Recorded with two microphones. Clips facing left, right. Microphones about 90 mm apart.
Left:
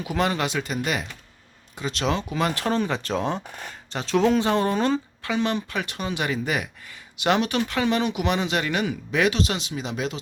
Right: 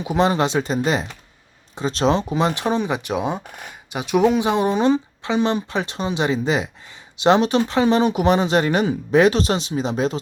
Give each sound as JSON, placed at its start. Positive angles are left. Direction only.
{"t": 0.0, "sound": "speech", "side_deg": -25}